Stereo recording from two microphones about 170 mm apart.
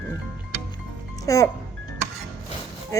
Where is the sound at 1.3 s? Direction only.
20° left (ahead or behind).